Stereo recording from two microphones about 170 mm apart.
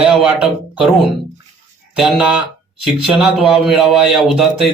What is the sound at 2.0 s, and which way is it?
A man's voice, 5° right (ahead or behind).